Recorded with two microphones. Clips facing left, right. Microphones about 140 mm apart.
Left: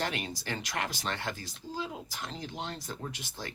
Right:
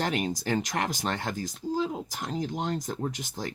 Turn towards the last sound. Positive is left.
turn(degrees=-45)  # may be behind; listen again after turning